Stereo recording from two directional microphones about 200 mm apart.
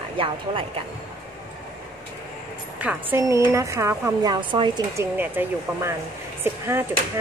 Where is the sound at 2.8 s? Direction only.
10° right (ahead or behind).